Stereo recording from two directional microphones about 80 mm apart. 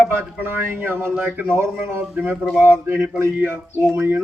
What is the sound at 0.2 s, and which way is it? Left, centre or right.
A man's voice, right.